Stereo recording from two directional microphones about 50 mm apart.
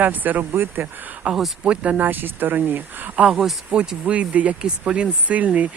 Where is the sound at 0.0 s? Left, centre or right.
Right.